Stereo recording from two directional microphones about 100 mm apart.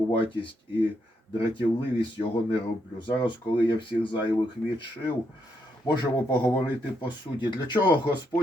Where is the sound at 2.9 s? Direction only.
55° left (ahead or behind).